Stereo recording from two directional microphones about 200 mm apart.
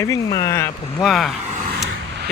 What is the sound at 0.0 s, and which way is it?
Speech, 15° left (ahead or behind).